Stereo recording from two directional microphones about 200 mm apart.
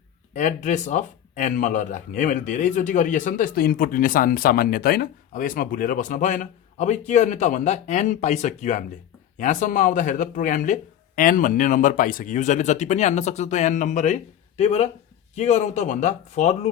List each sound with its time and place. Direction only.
0.3 s speech: 35° left (ahead or behind)